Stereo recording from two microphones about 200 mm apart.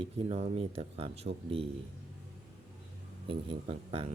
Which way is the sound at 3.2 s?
25° right (ahead or behind).